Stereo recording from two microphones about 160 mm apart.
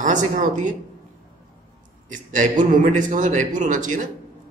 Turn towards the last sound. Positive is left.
turn(degrees=-55)  # may be behind; listen again after turning